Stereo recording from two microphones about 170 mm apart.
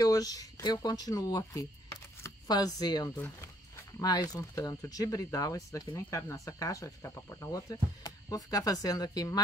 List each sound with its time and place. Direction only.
0.0 s speech: 20° left (ahead or behind)
3.2 s speech: 15° left (ahead or behind)